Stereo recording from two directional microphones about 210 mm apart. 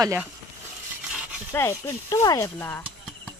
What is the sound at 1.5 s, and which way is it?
Speech, 15° left (ahead or behind).